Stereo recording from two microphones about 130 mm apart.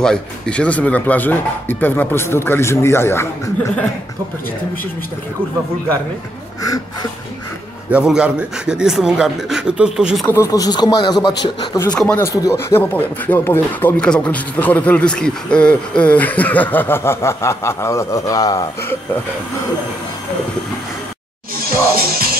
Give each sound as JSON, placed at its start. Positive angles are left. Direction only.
{"t": 0.0, "sound": "speech", "side_deg": 5}
{"t": 6.6, "sound": "speech", "side_deg": 30}
{"t": 7.9, "sound": "speech", "side_deg": -5}
{"t": 10.2, "sound": "speech", "side_deg": 20}
{"t": 11.9, "sound": "speech", "side_deg": 10}
{"t": 12.2, "sound": "speech", "side_deg": 20}